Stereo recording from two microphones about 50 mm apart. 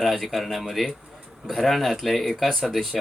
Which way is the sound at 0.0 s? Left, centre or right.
Centre.